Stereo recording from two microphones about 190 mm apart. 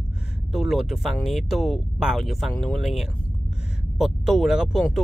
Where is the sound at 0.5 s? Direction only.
Centre (ahead or behind).